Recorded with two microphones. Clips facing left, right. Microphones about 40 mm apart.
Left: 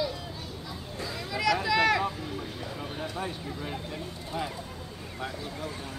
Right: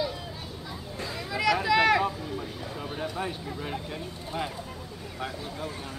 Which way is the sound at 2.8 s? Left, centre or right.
Centre.